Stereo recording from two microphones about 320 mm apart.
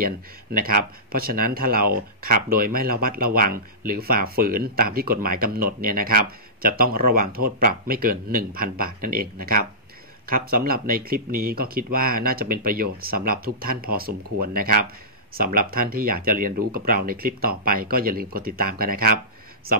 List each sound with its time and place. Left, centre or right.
0.0 s speech: right